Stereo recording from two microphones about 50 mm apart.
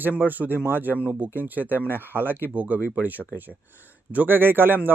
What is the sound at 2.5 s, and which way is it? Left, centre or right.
A man's voice, right.